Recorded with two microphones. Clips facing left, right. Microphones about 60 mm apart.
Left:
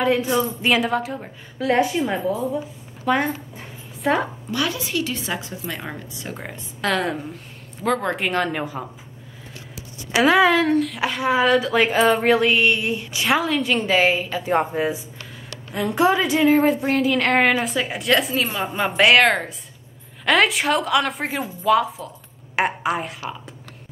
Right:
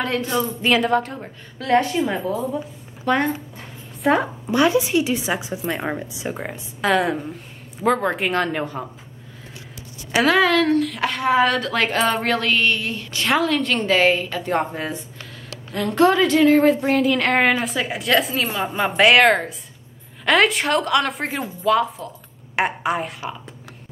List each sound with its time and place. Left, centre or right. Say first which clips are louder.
0.0 s a woman's voice: left 3 dB; centre
4.5 s a woman's voice: right 7 dB; right
6.3 s a woman's voice: right 3 dB; centre
10.1 s a woman's voice: left 1 dB; centre